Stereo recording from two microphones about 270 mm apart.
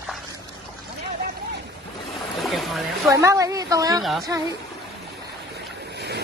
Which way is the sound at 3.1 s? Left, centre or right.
Centre.